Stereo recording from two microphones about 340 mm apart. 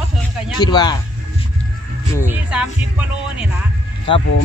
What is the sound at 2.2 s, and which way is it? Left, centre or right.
Speech, centre.